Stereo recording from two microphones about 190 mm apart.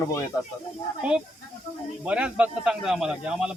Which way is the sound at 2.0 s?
5° right (ahead or behind).